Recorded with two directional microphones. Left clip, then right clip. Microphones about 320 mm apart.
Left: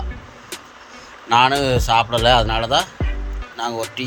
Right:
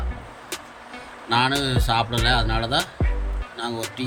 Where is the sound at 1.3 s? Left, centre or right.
Centre.